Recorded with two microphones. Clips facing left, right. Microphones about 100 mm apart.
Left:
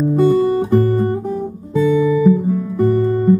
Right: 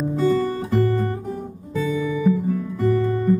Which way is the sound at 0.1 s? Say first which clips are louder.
Left 7 dB; 35° left (ahead or behind).